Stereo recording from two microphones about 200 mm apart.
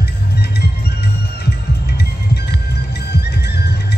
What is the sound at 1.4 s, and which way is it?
Heart sounds, 55° left (ahead or behind).